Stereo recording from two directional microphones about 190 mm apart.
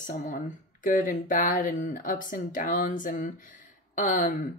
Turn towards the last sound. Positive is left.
turn(degrees=40)  # may be behind; listen again after turning